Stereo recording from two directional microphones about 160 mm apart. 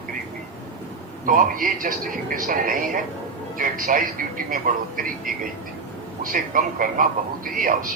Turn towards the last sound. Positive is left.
turn(degrees=-60)  # may be behind; listen again after turning